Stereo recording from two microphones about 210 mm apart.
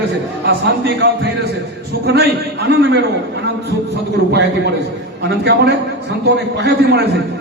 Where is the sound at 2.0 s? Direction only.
50° right (ahead or behind).